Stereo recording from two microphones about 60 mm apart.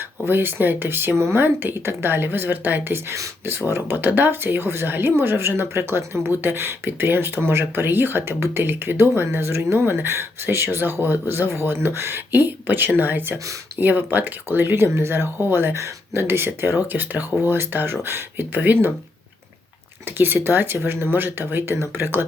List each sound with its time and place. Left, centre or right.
0.3 s speech: right
15.7 s speech: right
20.1 s speech: right